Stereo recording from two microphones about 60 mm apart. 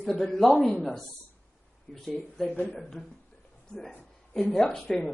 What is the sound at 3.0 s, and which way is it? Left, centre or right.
Speech, left.